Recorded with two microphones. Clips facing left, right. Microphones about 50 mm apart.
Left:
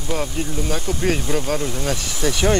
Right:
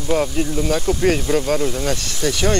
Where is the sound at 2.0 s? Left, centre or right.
Centre.